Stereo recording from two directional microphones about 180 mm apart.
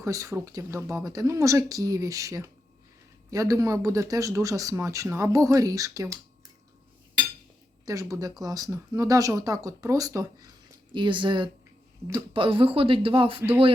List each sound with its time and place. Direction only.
0.0 s speech: 15° right (ahead or behind)
7.9 s speech: 20° right (ahead or behind)